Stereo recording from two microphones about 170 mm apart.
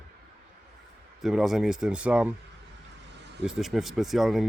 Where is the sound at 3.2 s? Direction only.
80° right.